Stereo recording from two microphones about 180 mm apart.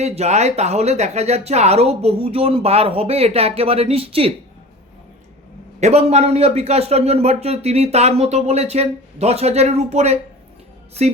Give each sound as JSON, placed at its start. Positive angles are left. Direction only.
{"t": 0.0, "sound": "speech", "side_deg": -40}
{"t": 5.8, "sound": "speech", "side_deg": -35}